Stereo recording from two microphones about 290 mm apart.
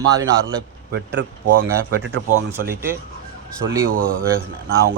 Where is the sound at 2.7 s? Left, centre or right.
Centre.